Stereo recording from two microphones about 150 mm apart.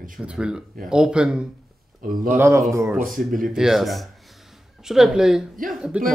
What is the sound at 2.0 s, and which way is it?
Speech, 65° right (ahead or behind).